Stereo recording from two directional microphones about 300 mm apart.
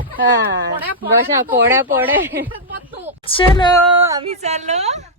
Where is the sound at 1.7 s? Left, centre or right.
Centre.